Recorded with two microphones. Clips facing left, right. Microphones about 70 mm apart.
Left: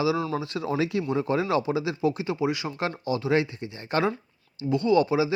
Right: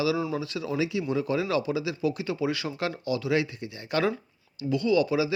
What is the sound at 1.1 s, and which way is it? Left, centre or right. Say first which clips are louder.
Speech: left 2 dB; left.